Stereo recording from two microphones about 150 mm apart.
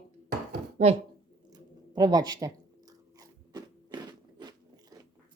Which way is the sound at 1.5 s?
25° right (ahead or behind).